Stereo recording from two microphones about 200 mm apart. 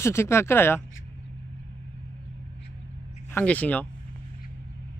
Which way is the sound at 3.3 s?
5° left (ahead or behind).